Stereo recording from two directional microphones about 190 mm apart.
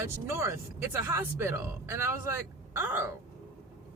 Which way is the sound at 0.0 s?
15° right (ahead or behind).